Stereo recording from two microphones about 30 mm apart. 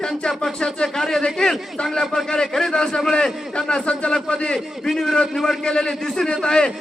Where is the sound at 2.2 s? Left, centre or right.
Left.